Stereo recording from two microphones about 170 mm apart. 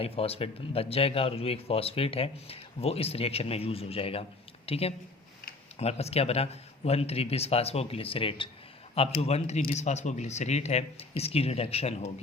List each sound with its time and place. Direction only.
0.0 s speech: 35° left (ahead or behind)